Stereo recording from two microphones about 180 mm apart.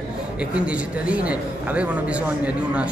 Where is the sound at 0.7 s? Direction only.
5° right (ahead or behind).